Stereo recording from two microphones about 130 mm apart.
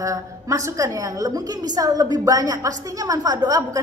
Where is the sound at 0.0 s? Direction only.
25° right (ahead or behind).